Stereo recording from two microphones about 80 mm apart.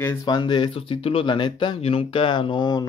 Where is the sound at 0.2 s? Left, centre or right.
Left.